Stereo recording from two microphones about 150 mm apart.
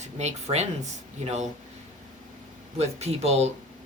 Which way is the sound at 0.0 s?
50° right (ahead or behind).